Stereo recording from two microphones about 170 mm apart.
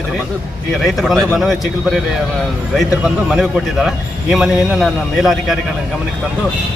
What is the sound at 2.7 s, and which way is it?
A man's voice, centre (ahead or behind).